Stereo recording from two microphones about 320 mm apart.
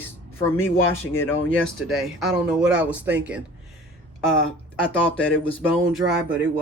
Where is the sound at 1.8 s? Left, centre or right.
Centre.